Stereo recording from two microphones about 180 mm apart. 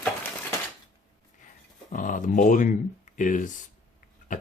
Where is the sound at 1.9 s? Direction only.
45° left (ahead or behind).